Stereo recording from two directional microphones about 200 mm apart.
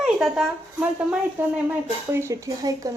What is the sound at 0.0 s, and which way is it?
A woman's voice, centre (ahead or behind).